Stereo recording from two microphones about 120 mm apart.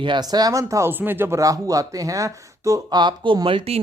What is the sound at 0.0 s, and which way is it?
Speech, 40° right (ahead or behind).